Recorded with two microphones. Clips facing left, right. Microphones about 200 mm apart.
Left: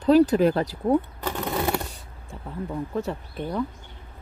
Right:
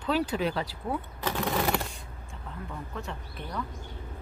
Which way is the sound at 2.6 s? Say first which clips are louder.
Left 11 dB; 35° left (ahead or behind).